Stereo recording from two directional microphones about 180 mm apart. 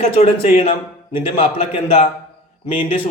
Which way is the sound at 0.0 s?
35° left (ahead or behind).